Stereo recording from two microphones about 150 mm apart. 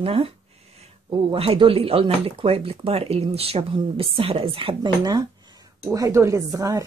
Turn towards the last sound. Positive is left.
turn(degrees=-20)  # may be behind; listen again after turning